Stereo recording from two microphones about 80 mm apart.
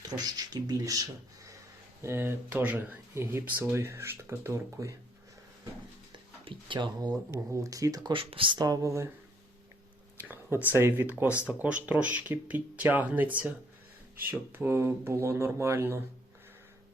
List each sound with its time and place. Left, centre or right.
0.0 s speech: right
2.0 s speech: right
6.5 s speech: right
7.5 s speech: right
8.1 s speech: right
8.6 s speech: right
10.2 s a sound: right
10.7 s speech: right